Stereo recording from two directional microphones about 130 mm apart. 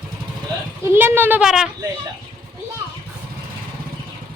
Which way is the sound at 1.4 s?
5° right (ahead or behind).